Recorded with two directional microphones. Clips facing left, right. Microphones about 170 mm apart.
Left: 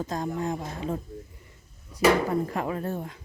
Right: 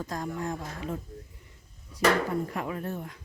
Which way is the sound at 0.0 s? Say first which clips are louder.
Left 4 dB; 25° left (ahead or behind).